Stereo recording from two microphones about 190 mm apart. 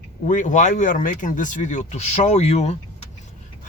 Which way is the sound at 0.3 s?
40° left (ahead or behind).